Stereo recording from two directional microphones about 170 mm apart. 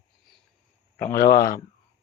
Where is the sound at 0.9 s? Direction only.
50° left (ahead or behind).